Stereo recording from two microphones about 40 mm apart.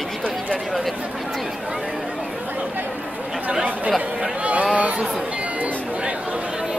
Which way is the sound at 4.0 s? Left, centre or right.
Right.